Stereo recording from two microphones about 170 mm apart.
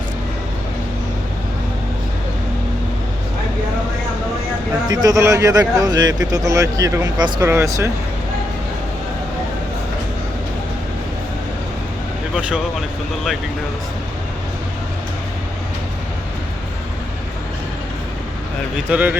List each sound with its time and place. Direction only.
4.9 s a man's voice: 20° right (ahead or behind)
18.9 s speech: 10° right (ahead or behind)